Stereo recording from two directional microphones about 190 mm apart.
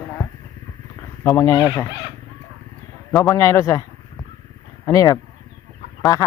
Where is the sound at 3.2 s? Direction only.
15° left (ahead or behind).